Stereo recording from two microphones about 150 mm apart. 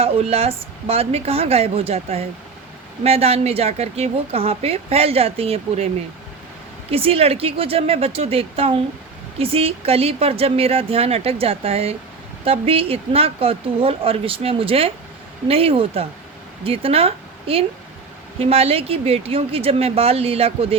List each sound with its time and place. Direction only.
0.0 s a woman's voice: 40° right (ahead or behind)
6.9 s a woman's voice: 40° right (ahead or behind)